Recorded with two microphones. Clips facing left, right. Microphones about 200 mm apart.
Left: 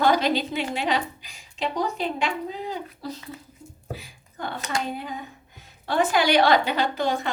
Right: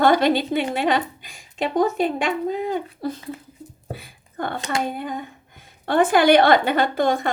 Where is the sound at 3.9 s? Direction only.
55° right (ahead or behind).